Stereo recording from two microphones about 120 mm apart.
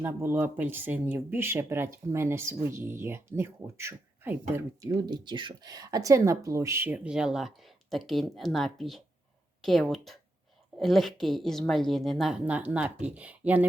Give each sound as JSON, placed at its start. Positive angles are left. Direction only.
{"t": 0.0, "sound": "speech", "side_deg": -20}
{"t": 4.9, "sound": "a woman's voice", "side_deg": -35}